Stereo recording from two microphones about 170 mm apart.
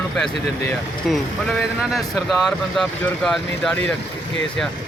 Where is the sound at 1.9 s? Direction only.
Centre (ahead or behind).